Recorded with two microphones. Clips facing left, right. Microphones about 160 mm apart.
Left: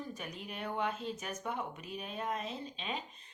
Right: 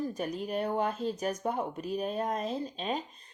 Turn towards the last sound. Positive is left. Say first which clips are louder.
# right 7 dB
turn(degrees=-40)  # may be behind; listen again after turning